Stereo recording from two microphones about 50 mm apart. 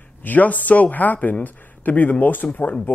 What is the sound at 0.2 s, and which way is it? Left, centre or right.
Speech, left.